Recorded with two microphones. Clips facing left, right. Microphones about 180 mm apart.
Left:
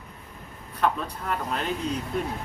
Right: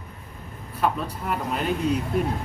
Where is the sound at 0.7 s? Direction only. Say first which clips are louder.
Right 1 dB; 5° right (ahead or behind).